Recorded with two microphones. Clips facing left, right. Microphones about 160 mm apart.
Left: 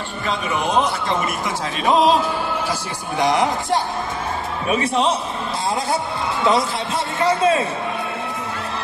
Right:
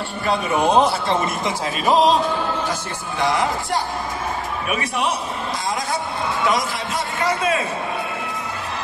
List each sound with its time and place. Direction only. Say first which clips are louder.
0.7 s speech: right 3 dB; 35° right (ahead or behind)
1.9 s a man's voice: even; centre (ahead or behind)
3.2 s speech: left 2 dB; 20° left (ahead or behind)
4.6 s speech: left 6 dB; 30° left (ahead or behind)
7.2 s speech: left 4 dB; 30° left (ahead or behind)